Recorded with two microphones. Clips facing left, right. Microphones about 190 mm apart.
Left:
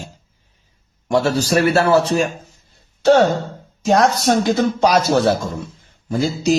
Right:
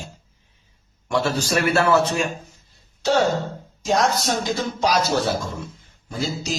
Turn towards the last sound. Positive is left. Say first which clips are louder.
# left 9 dB
turn(degrees=60)  # may be behind; listen again after turning